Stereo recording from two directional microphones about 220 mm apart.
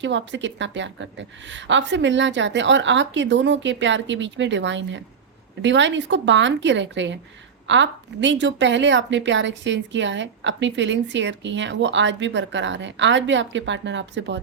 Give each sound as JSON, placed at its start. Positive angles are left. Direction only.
{"t": 0.0, "sound": "a woman's voice", "side_deg": -55}